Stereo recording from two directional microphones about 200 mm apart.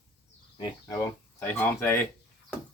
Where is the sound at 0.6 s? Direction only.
20° left (ahead or behind).